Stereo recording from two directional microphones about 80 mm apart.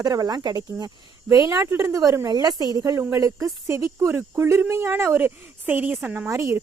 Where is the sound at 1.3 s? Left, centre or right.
Right.